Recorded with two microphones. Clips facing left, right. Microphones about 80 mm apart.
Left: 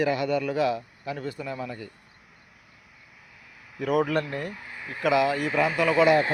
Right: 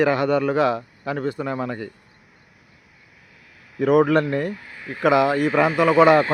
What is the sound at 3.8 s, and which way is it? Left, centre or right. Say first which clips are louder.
Speech: right 8 dB; right.